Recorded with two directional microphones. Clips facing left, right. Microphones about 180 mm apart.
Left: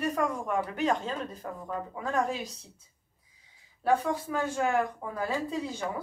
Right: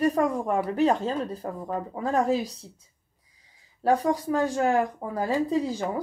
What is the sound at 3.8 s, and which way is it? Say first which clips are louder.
Speech: right 4 dB; 35° right (ahead or behind).